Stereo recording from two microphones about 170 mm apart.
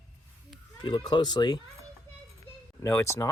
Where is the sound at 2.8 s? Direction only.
15° left (ahead or behind).